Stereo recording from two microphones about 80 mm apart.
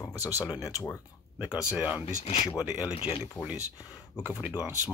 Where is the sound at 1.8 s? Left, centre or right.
Centre.